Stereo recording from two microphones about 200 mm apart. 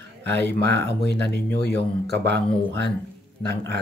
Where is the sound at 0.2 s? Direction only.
55° right (ahead or behind).